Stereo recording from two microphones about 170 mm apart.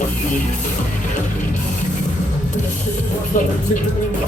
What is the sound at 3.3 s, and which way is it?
Speech, 50° left (ahead or behind).